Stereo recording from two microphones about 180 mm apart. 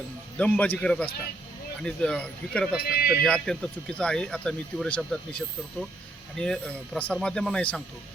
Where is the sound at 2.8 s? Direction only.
60° left (ahead or behind).